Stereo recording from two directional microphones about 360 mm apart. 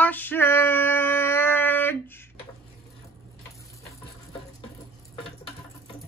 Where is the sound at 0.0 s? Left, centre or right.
Centre.